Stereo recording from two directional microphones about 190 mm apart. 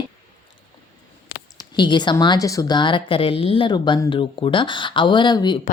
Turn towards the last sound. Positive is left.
turn(degrees=20)  # may be behind; listen again after turning